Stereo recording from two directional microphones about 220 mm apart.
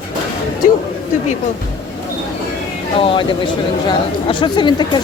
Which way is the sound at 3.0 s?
25° left (ahead or behind).